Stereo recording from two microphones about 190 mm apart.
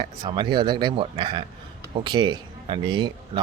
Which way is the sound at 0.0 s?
25° right (ahead or behind).